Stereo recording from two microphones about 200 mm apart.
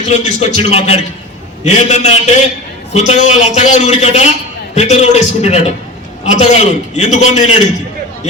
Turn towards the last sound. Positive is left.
turn(degrees=35)  # may be behind; listen again after turning